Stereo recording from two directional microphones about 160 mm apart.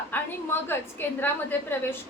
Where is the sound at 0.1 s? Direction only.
15° left (ahead or behind).